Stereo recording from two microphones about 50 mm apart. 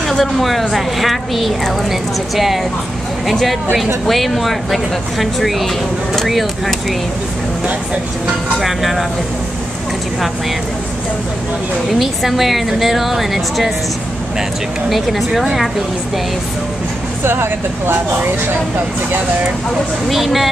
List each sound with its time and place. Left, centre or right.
0.1 s a woman's voice: centre
8.5 s a woman's voice: centre
11.9 s a woman's voice: centre
14.9 s a woman's voice: centre
17.2 s speech: right
20.1 s a woman's voice: centre